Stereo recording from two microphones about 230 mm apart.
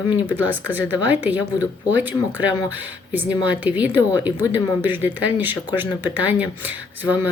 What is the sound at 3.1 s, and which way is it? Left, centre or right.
Speech, centre.